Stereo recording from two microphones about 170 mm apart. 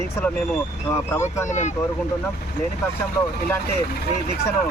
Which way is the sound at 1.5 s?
45° left (ahead or behind).